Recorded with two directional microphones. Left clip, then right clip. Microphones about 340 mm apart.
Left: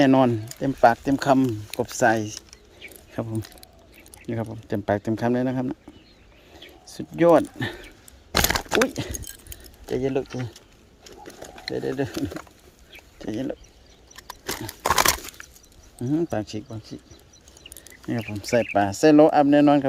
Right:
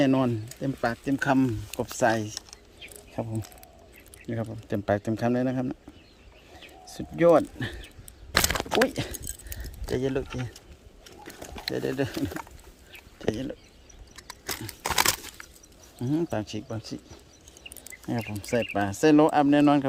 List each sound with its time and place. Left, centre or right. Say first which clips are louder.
0.0 s speech: left 6 dB; centre
4.3 s speech: left 3 dB; centre
6.9 s speech: left 3 dB; centre
8.4 s a sound: left 4 dB; centre
8.8 s speech: left 1 dB; centre
11.3 s a sound: right 1 dB; right
11.7 s speech: left 2 dB; centre
14.2 s a sound: left 4 dB; centre
15.4 s a sound: left 2 dB; centre
16.0 s speech: left 3 dB; centre
16.6 s speech: right 2 dB; centre
18.1 s speech: left 5 dB; centre